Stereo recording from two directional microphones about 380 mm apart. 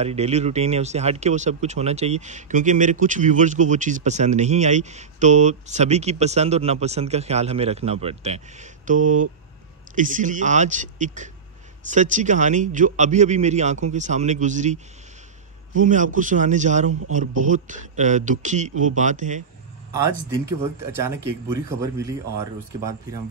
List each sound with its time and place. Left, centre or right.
0.0 s a man's voice: centre
20.8 s speech: centre